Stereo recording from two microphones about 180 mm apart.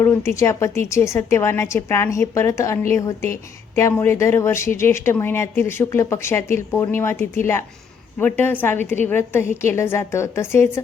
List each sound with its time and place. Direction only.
0.0 s speech: 15° left (ahead or behind)